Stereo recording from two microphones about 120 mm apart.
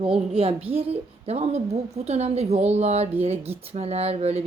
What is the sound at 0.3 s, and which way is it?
A woman's voice, 55° right (ahead or behind).